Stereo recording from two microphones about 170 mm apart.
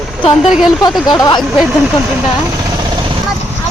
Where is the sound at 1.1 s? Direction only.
25° left (ahead or behind).